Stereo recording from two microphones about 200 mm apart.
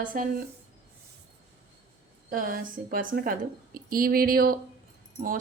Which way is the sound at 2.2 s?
45° right (ahead or behind).